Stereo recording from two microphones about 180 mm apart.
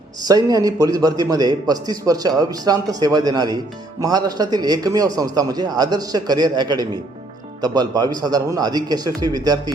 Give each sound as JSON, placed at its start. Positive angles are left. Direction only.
{"t": 0.2, "sound": "a man's voice", "side_deg": -20}